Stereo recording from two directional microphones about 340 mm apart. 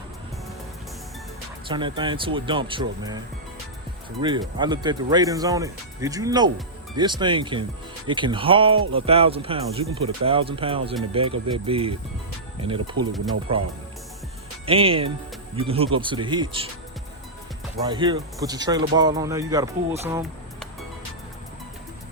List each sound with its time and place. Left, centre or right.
1.6 s speech: centre
4.2 s speech: centre
14.7 s speech: centre
17.8 s speech: centre